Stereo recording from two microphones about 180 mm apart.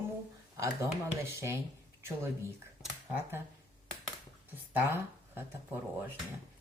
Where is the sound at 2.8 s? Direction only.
10° right (ahead or behind).